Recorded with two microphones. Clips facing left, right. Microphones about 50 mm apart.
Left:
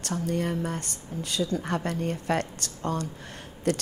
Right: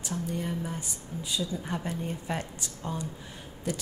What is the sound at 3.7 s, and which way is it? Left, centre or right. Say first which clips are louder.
Speech: left 7 dB; left.